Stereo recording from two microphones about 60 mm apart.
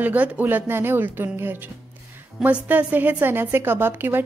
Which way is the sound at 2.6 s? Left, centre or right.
Right.